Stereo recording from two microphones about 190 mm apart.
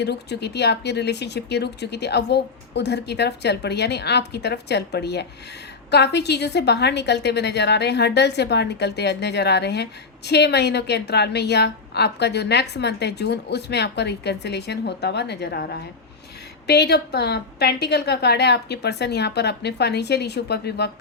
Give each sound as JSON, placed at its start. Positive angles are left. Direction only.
{"t": 0.0, "sound": "a woman's voice", "side_deg": 60}